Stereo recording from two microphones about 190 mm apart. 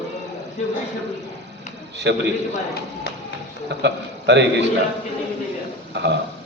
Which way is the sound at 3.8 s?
65° right (ahead or behind).